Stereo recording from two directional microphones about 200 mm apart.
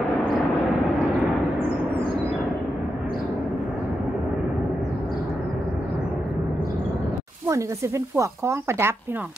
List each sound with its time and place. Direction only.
8.2 s speech: 15° right (ahead or behind)